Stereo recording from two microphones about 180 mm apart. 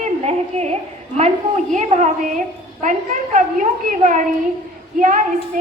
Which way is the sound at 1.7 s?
40° right (ahead or behind).